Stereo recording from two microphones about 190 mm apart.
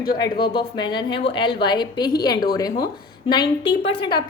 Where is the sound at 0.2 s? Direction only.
25° left (ahead or behind).